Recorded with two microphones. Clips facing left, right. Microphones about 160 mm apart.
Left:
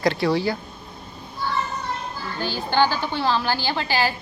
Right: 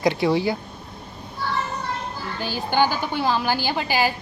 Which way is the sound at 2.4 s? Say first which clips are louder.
Even; 15° right (ahead or behind).